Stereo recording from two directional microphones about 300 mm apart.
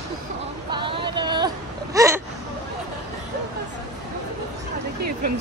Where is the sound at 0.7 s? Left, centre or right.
Centre.